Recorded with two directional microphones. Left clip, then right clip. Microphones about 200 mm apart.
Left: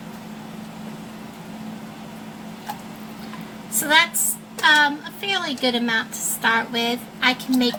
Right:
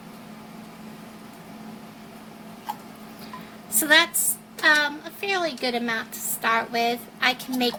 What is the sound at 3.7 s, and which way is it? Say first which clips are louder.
A woman's voice: left 1 dB; 50° right (ahead or behind).